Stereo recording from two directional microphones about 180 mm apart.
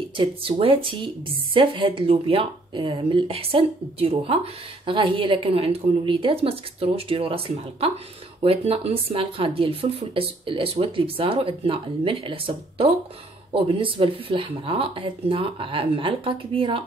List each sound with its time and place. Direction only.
0.2 s speech: 30° right (ahead or behind)